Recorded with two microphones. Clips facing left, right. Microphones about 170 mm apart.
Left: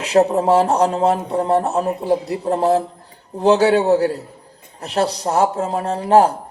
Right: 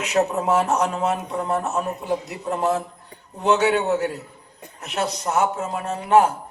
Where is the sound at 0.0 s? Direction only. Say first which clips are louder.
Left 6 dB; 30° left (ahead or behind).